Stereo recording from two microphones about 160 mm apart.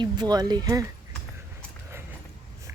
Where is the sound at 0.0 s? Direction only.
25° right (ahead or behind).